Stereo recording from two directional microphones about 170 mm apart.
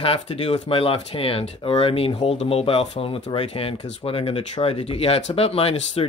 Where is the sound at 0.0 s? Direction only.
35° left (ahead or behind).